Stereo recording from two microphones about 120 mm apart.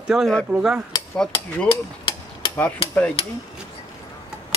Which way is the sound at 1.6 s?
50° left (ahead or behind).